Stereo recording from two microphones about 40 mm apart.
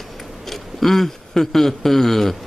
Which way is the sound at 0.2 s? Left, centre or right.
Centre.